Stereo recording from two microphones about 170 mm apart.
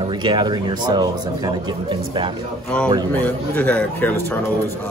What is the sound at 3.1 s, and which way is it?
A man's voice, 10° left (ahead or behind).